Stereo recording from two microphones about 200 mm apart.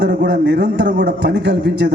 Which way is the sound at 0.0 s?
55° right (ahead or behind).